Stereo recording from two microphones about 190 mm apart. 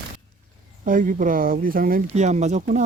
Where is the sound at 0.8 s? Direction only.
45° right (ahead or behind).